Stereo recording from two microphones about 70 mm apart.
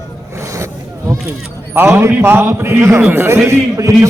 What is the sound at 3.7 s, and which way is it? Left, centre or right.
Speech, right.